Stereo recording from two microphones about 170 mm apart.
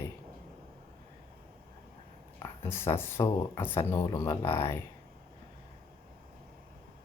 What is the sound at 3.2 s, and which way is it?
Speech, 30° left (ahead or behind).